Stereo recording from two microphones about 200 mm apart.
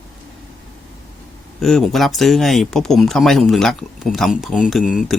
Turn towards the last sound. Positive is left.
turn(degrees=0)  # may be behind; listen again after turning